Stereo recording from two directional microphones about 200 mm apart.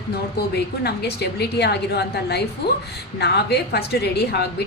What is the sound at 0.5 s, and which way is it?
A woman's voice, 55° left (ahead or behind).